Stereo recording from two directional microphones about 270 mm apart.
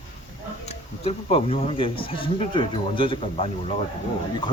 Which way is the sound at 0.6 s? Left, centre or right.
Left.